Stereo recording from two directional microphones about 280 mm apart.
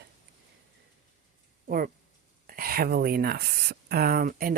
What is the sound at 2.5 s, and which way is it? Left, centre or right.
Speech, right.